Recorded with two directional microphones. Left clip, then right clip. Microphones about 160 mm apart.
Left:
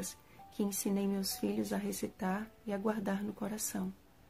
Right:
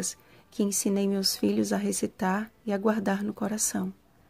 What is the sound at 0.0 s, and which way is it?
Speech, 40° right (ahead or behind).